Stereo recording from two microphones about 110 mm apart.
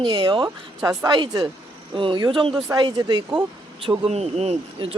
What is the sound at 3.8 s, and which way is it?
Speech, 60° right (ahead or behind).